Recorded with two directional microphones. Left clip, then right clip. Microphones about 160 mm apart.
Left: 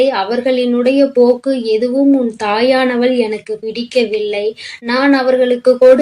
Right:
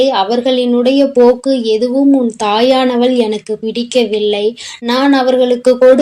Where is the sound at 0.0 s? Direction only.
30° right (ahead or behind).